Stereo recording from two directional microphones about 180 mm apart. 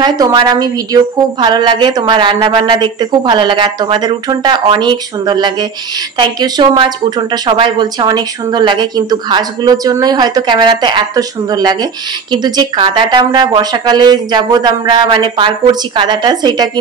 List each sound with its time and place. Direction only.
0.0 s speech: 25° right (ahead or behind)